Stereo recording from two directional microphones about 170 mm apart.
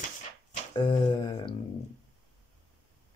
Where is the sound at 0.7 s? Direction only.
25° left (ahead or behind).